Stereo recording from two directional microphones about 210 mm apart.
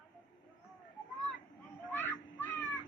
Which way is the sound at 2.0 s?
10° left (ahead or behind).